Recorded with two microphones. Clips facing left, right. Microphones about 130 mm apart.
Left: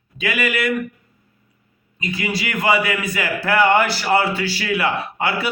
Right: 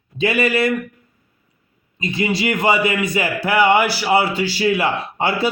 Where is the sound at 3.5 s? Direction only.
10° right (ahead or behind); by 5.5 s 30° right (ahead or behind).